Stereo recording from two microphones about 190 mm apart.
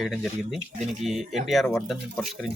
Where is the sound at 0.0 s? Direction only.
Centre (ahead or behind).